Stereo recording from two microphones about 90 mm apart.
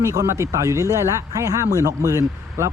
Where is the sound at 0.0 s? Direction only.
35° right (ahead or behind).